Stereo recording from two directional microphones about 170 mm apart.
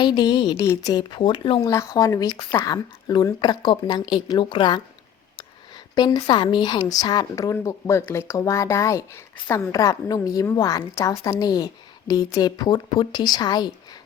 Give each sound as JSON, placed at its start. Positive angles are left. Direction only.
{"t": 0.0, "sound": "a woman's voice", "side_deg": 25}
{"t": 5.9, "sound": "a woman's voice", "side_deg": 20}